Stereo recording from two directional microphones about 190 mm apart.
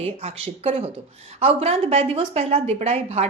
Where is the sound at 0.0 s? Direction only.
30° right (ahead or behind).